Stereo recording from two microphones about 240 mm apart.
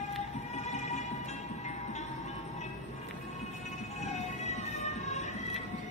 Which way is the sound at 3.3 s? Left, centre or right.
Left.